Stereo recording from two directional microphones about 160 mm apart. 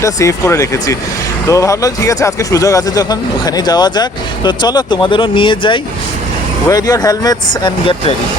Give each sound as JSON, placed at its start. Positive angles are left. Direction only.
{"t": 0.0, "sound": "speech", "side_deg": 20}